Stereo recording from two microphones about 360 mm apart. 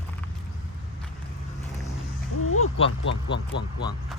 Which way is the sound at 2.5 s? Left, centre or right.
Left.